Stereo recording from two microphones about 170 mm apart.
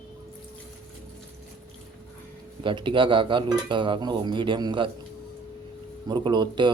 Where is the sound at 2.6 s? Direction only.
30° right (ahead or behind).